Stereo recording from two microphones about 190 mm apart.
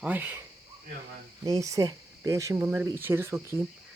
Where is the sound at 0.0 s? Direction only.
10° right (ahead or behind).